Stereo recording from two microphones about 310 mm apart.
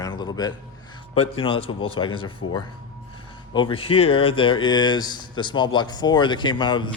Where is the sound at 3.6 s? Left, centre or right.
Centre.